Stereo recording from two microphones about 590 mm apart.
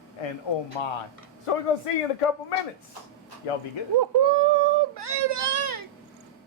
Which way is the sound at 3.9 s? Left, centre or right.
Right.